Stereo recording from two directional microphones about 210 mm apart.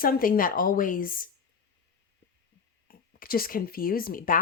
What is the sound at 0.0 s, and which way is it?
Speech, 45° left (ahead or behind).